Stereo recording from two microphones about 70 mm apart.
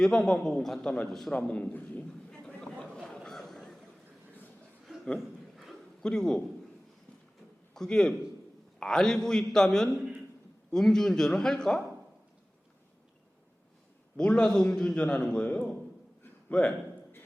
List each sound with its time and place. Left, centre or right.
0.0 s a man's voice: centre; by 2.0 s left
2.5 s chatter: centre
3.2 s a sound: centre
6.0 s a man's voice: centre
7.7 s a man's voice: centre
14.2 s a man's voice: centre
16.5 s a man's voice: centre